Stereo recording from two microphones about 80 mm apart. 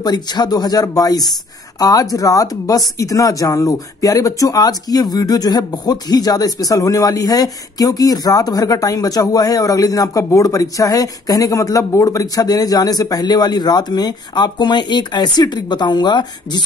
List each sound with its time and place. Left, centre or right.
0.0 s speech: left